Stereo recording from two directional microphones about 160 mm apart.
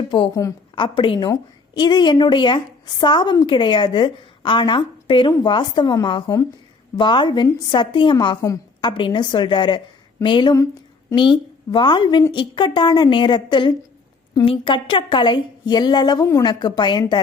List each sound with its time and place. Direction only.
0.1 s a woman's voice: 25° left (ahead or behind)